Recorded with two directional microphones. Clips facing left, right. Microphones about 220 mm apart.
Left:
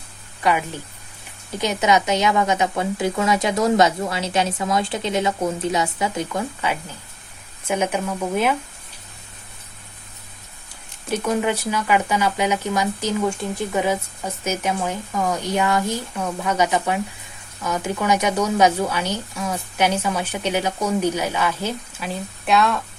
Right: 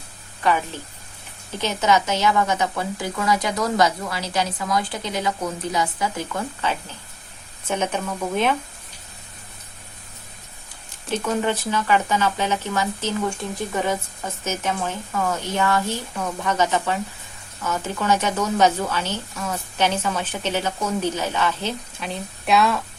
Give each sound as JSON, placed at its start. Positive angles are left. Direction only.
{"t": 0.4, "sound": "a woman's voice", "side_deg": 10}
{"t": 11.1, "sound": "speech", "side_deg": 10}